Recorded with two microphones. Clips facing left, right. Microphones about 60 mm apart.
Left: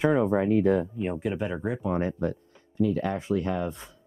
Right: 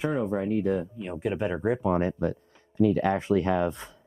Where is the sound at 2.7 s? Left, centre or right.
Right.